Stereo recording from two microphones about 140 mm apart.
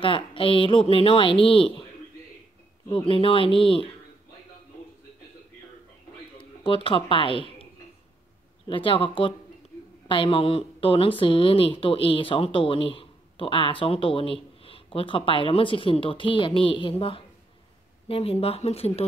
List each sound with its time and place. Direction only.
0.0 s speech: 40° left (ahead or behind)
3.1 s speech: 40° left (ahead or behind)
6.3 s speech: 40° left (ahead or behind)
8.6 s speech: 40° left (ahead or behind)